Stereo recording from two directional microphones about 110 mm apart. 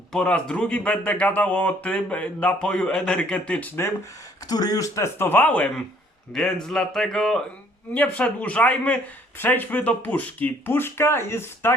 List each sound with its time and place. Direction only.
0.1 s speech: 10° left (ahead or behind)
4.4 s speech: 35° left (ahead or behind)